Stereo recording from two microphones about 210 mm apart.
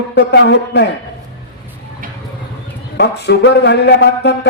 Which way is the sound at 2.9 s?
55° left (ahead or behind).